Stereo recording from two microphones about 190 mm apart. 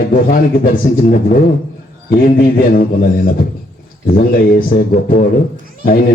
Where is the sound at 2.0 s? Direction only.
45° left (ahead or behind).